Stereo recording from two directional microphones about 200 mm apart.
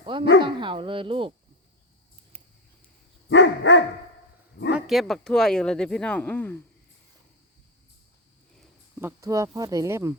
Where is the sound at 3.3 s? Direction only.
65° left (ahead or behind).